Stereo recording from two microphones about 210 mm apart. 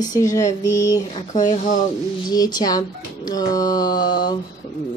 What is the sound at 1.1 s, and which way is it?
Speech, 35° left (ahead or behind).